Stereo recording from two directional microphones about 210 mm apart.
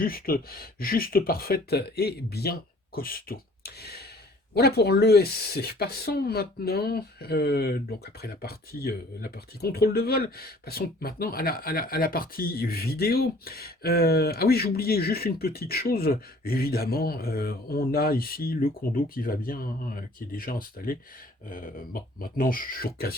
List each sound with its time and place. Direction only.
0.0 s speech: 45° left (ahead or behind)